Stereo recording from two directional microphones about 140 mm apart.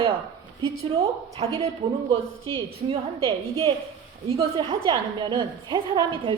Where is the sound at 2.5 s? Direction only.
40° right (ahead or behind).